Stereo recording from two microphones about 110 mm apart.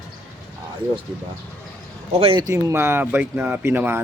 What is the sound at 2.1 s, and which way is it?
Speech, 65° right (ahead or behind).